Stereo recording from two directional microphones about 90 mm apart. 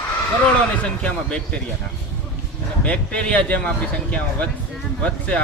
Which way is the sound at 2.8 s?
15° left (ahead or behind).